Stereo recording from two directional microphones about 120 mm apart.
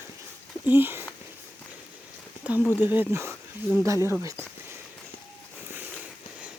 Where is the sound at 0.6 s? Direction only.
15° right (ahead or behind).